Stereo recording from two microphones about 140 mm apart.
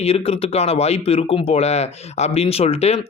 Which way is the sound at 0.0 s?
45° left (ahead or behind).